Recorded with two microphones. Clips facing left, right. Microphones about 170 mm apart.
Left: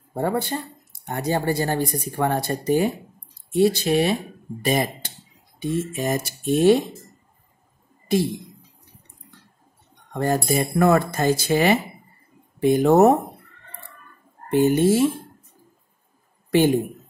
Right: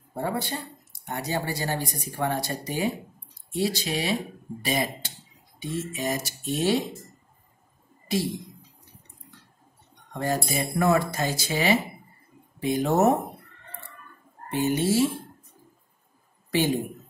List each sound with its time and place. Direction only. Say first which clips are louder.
0.2 s speech: left 5 dB; 50° left (ahead or behind)
10.1 s speech: left 6 dB; 55° left (ahead or behind)
14.5 s speech: left 7 dB; 50° left (ahead or behind)
16.4 s a man's voice: left 7 dB; 55° left (ahead or behind)